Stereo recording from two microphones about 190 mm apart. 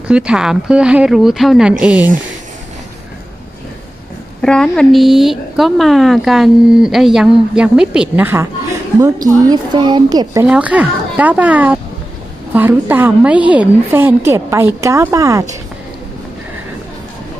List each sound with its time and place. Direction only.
0.1 s a woman's voice: 5° right (ahead or behind)
4.4 s a woman's voice: 5° left (ahead or behind); by 10.4 s 20° right (ahead or behind)
10.4 s a woman's voice: 5° right (ahead or behind)